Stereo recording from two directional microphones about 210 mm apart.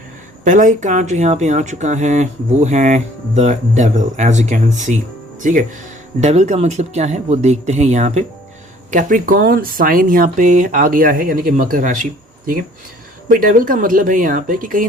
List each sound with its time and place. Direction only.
0.4 s speech: 40° right (ahead or behind)
13.2 s speech: 40° right (ahead or behind)